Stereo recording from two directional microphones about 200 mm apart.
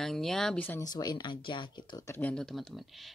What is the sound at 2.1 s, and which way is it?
Speech, 5° left (ahead or behind).